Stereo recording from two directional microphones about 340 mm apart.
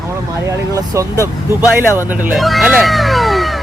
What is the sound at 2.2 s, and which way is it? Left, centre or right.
Speech, centre.